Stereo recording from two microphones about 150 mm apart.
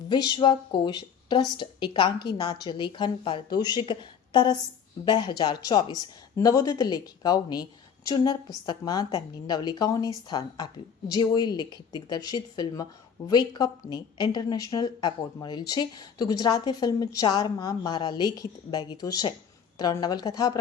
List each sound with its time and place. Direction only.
0.1 s a woman's voice: 30° left (ahead or behind)